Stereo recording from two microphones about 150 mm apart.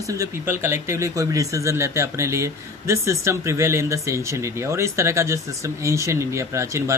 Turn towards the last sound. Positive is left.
turn(degrees=-20)  # may be behind; listen again after turning